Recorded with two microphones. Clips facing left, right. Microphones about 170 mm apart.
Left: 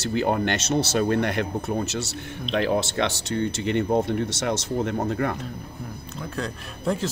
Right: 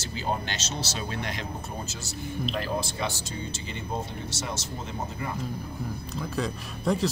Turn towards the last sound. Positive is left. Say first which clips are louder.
# even
turn(degrees=0)  # may be behind; listen again after turning